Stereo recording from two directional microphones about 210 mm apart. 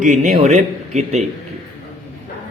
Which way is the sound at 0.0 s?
35° right (ahead or behind).